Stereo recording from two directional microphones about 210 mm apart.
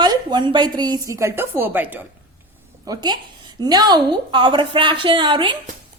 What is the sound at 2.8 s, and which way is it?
A woman's voice, 20° right (ahead or behind).